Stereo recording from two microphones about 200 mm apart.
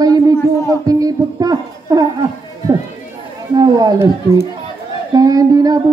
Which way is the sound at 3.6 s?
20° right (ahead or behind).